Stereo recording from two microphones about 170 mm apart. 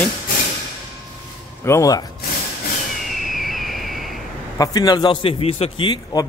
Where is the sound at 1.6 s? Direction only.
15° left (ahead or behind).